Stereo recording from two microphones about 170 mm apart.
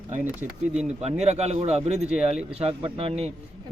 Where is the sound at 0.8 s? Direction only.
40° right (ahead or behind).